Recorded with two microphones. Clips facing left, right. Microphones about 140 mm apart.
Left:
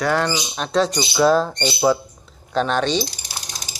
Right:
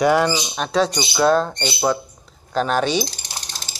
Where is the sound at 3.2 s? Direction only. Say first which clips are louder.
Even; 10° left (ahead or behind).